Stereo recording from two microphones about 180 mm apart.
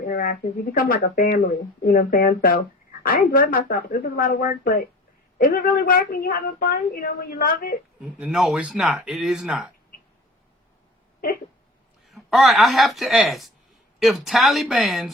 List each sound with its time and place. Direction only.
0.1 s a woman's voice: 50° left (ahead or behind)
8.2 s speech: 5° right (ahead or behind)
12.0 s speech: centre (ahead or behind)